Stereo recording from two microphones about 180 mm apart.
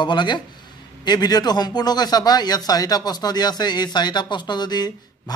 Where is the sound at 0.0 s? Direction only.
25° left (ahead or behind).